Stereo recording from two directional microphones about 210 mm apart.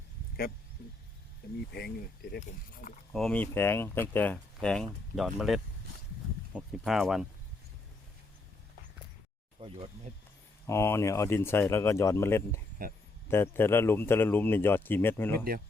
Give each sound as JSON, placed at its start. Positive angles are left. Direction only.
{"t": 0.8, "sound": "speech", "side_deg": 50}
{"t": 3.1, "sound": "speech", "side_deg": 0}
{"t": 9.6, "sound": "speech", "side_deg": -25}
{"t": 10.7, "sound": "speech", "side_deg": 10}